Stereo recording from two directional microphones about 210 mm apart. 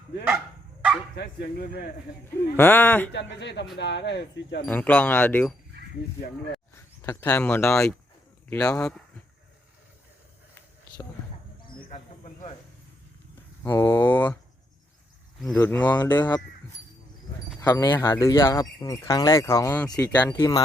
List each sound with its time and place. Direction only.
1.1 s speech: 50° left (ahead or behind)
2.6 s speech: 10° left (ahead or behind)
3.1 s speech: 55° left (ahead or behind)
4.6 s speech: 5° left (ahead or behind)
11.8 s cricket: 30° left (ahead or behind)
13.7 s speech: 10° left (ahead or behind)
15.4 s speech: 10° left (ahead or behind)
17.6 s speech: 15° left (ahead or behind)